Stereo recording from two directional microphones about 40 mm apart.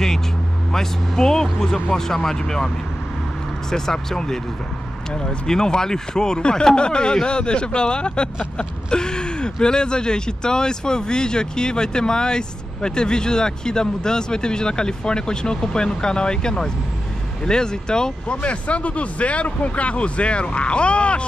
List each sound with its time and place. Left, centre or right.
0.7 s speech: centre
3.7 s speech: centre
18.4 s speech: left